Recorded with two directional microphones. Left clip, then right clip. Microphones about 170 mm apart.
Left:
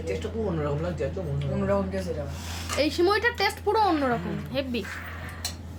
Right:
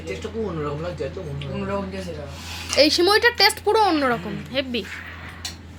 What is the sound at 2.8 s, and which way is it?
A child's voice, 35° right (ahead or behind).